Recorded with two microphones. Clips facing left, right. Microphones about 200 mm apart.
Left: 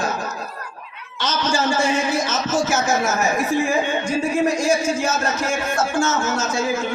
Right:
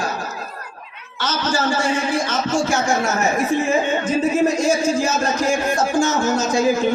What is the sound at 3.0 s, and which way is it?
Speech, centre (ahead or behind).